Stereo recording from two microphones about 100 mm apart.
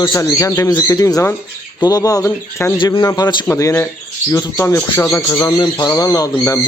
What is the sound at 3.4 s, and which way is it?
Speech, 30° left (ahead or behind).